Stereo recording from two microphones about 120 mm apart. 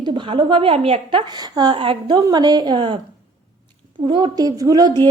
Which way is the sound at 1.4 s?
35° right (ahead or behind).